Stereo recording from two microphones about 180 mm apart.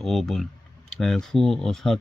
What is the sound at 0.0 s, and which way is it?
Speech, centre (ahead or behind).